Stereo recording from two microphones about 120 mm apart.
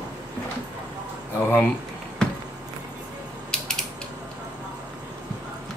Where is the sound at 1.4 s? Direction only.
20° left (ahead or behind).